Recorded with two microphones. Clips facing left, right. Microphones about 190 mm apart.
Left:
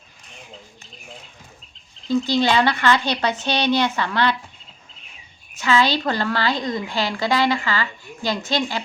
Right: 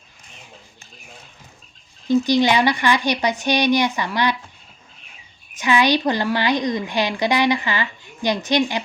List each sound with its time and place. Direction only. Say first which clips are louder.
2.0 s a woman's voice: right 3 dB; 15° right (ahead or behind)
5.5 s a woman's voice: right 2 dB; 15° right (ahead or behind)